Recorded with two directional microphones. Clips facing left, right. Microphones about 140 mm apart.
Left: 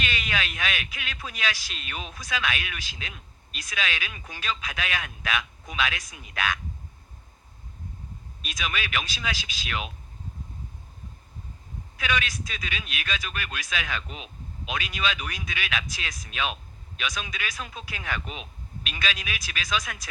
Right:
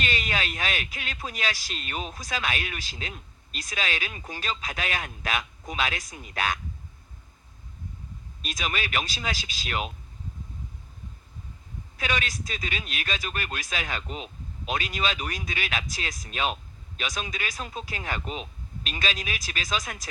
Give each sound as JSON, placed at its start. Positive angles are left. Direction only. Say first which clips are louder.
{"t": 0.0, "sound": "speech", "louder": "right 1 dB", "side_deg": -35}
{"t": 8.5, "sound": "speech", "louder": "right 1 dB", "side_deg": -40}
{"t": 11.9, "sound": "speech", "louder": "left 1 dB", "side_deg": -40}